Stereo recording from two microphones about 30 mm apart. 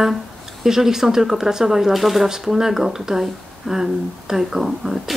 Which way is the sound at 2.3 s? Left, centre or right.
Centre.